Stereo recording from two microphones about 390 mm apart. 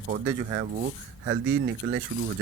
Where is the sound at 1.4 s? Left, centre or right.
Right.